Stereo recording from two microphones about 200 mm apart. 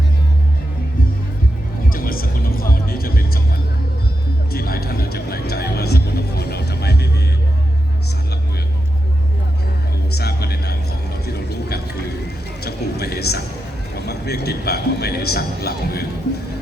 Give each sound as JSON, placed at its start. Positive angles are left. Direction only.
{"t": 1.9, "sound": "music", "side_deg": 45}
{"t": 4.5, "sound": "music", "side_deg": 50}
{"t": 10.2, "sound": "a sound", "side_deg": 50}